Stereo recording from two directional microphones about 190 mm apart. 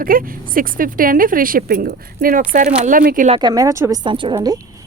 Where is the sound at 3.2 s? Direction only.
25° right (ahead or behind).